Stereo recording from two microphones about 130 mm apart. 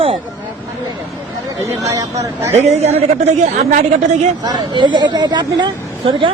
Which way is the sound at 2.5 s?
55° right (ahead or behind).